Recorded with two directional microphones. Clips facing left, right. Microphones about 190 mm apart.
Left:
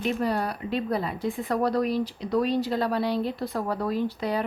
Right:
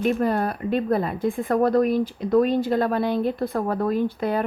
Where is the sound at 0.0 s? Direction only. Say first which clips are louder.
Right 5 dB; 50° right (ahead or behind).